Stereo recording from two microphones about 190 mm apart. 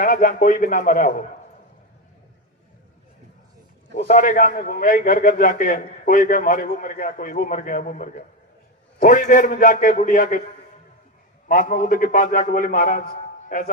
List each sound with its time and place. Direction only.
0.0 s a man's voice: 45° left (ahead or behind)
3.9 s a man's voice: 40° left (ahead or behind)
11.4 s a man's voice: 45° left (ahead or behind)